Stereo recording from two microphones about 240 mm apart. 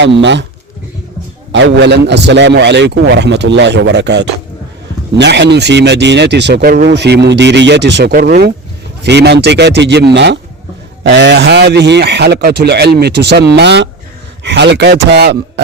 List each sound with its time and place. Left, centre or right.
0.0 s speech: right
1.5 s speech: right